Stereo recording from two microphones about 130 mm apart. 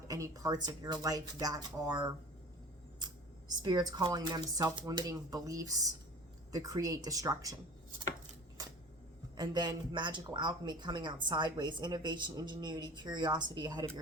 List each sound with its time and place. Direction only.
0.1 s speech: 25° right (ahead or behind)
3.6 s speech: 30° right (ahead or behind)
9.4 s speech: 35° right (ahead or behind)